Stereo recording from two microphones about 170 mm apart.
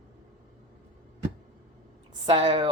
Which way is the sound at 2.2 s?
30° right (ahead or behind).